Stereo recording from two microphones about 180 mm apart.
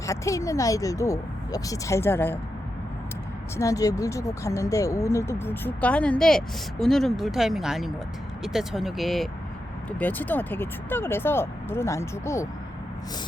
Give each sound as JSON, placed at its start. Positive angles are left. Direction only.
{"t": 0.0, "sound": "speech", "side_deg": 15}
{"t": 3.6, "sound": "speech", "side_deg": 20}